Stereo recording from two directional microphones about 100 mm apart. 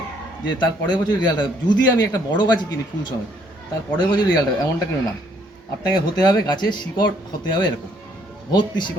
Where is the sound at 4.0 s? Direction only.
45° left (ahead or behind).